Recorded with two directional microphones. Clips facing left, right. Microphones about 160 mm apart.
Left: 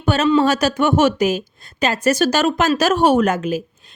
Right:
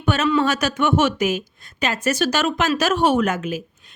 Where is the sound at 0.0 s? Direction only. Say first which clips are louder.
Left 4 dB; 35° left (ahead or behind).